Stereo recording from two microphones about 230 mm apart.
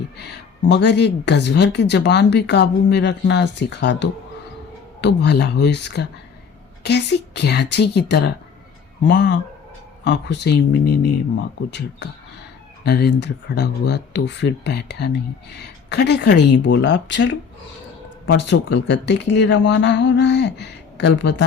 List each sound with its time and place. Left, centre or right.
0.2 s a woman's voice: left